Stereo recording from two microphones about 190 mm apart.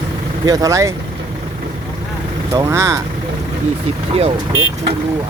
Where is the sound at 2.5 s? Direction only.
15° right (ahead or behind).